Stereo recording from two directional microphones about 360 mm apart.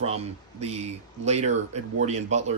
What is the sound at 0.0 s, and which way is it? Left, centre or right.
Speech, centre.